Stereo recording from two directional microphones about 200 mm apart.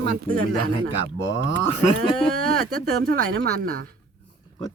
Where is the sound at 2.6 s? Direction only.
50° right (ahead or behind).